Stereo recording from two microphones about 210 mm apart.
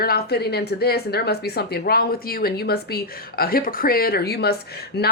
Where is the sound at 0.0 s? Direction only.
45° left (ahead or behind).